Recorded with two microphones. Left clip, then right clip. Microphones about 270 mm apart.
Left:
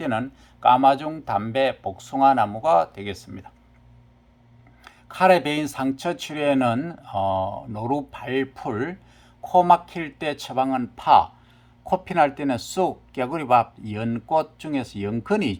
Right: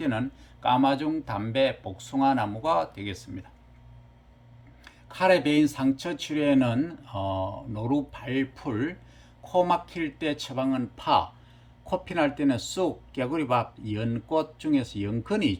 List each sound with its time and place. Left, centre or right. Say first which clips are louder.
0.0 s speech: left 4 dB; centre
4.9 s speech: left 5 dB; centre